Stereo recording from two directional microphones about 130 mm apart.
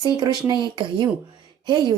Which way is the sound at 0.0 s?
30° right (ahead or behind).